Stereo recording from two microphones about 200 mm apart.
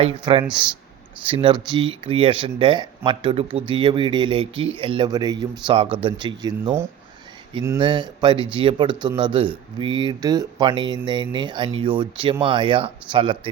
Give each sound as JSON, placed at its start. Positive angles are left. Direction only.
{"t": 0.0, "sound": "speech", "side_deg": -25}